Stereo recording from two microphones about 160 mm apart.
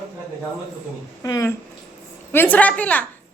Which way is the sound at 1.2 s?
20° left (ahead or behind).